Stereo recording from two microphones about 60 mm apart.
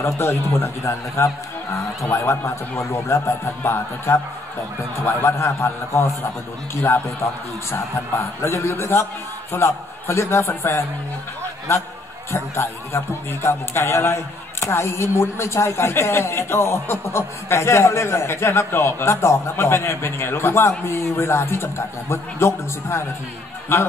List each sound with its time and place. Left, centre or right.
0.0 s a man's voice: left